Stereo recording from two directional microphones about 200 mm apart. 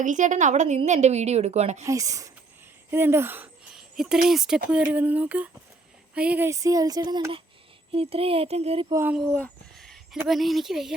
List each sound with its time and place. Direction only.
0.0 s a woman's voice: 40° right (ahead or behind)
1.8 s speech: 15° right (ahead or behind)
8.9 s speech: 10° right (ahead or behind)
9.3 s speech: 5° left (ahead or behind)